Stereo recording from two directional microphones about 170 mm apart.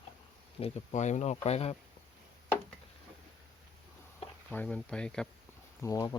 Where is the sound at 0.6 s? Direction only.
40° left (ahead or behind).